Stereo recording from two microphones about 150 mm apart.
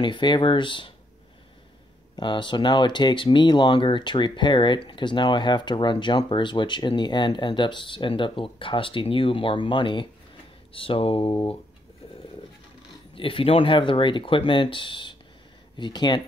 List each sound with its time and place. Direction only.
0.0 s speech: 30° left (ahead or behind)
2.1 s speech: 30° left (ahead or behind)
13.1 s speech: 35° left (ahead or behind)